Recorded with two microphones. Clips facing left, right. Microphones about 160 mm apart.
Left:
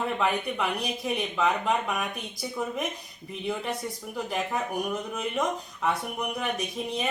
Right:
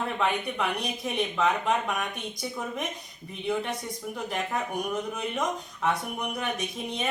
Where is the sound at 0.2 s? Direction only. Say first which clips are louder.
Left 1 dB; centre (ahead or behind).